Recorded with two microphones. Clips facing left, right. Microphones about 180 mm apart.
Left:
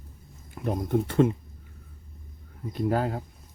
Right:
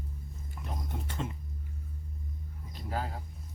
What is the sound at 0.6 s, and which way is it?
Speech, 60° left (ahead or behind).